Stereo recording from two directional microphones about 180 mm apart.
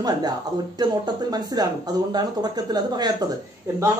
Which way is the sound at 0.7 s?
25° right (ahead or behind).